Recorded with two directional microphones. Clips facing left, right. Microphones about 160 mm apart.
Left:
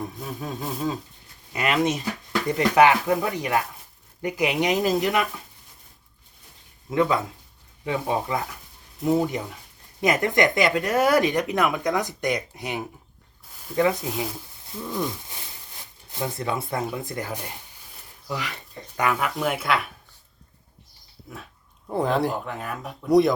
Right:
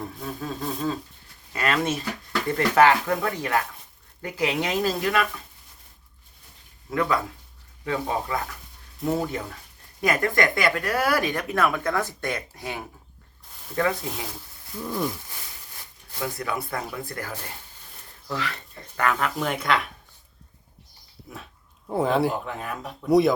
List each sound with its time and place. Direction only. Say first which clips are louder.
0.0 s speech: even; 15° left (ahead or behind)
6.9 s speech: left 3 dB; 20° left (ahead or behind)
14.8 s speech: right 1 dB; 5° right (ahead or behind)
16.1 s speech: left 2 dB; 25° left (ahead or behind); by 19.9 s 5° left (ahead or behind)
21.8 s speech: right 1 dB; centre (ahead or behind)